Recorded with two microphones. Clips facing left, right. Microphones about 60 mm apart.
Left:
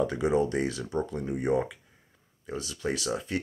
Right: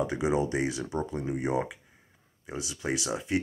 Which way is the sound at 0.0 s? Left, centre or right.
Centre.